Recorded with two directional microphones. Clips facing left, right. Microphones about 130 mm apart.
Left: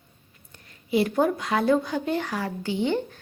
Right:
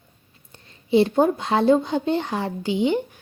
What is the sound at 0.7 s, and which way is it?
Speech, 25° right (ahead or behind).